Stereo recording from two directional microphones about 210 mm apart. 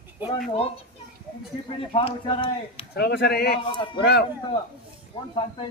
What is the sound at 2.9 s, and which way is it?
Speech, 50° left (ahead or behind).